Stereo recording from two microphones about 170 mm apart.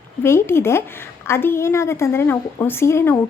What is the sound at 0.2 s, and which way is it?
A woman's voice, 15° left (ahead or behind).